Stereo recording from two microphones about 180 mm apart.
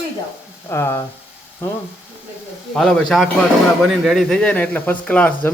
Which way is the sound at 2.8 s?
Centre (ahead or behind).